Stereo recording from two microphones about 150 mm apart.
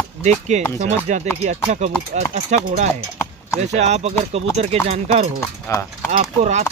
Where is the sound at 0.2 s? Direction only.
50° right (ahead or behind).